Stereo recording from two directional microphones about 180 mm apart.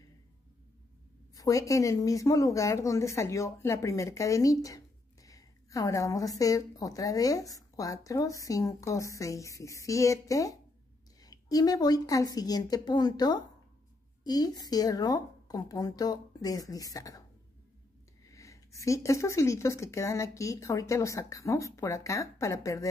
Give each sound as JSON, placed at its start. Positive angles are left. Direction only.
{"t": 1.3, "sound": "a woman's voice", "side_deg": 20}
{"t": 18.2, "sound": "speech", "side_deg": 15}